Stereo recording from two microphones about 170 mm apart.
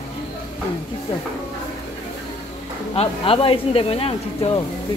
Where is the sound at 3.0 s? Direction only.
35° left (ahead or behind).